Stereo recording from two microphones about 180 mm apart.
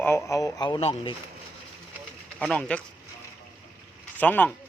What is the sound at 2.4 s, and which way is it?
Speech, 5° left (ahead or behind).